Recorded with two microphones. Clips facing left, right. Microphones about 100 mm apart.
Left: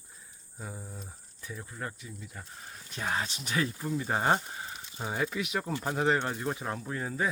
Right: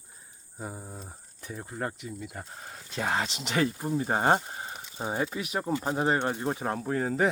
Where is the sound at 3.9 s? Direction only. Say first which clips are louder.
Right 2 dB; 40° right (ahead or behind).